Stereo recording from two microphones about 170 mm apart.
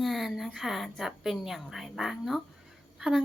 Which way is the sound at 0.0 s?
Centre (ahead or behind).